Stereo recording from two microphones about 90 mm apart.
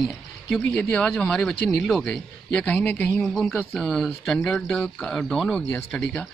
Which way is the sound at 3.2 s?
5° right (ahead or behind).